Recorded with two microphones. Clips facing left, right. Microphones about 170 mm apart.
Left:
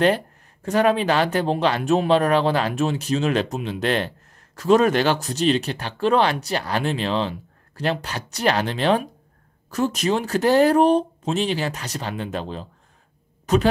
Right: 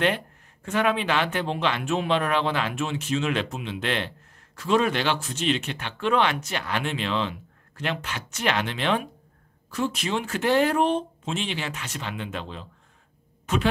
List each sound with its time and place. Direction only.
0.0 s speech: 40° left (ahead or behind)